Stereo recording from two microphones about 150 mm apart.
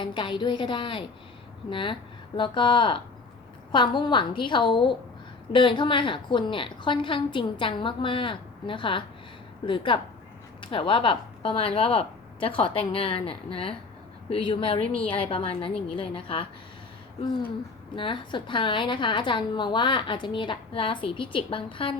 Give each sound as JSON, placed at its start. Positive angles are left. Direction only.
{"t": 0.0, "sound": "a woman's voice", "side_deg": 30}
{"t": 17.9, "sound": "a woman's voice", "side_deg": 35}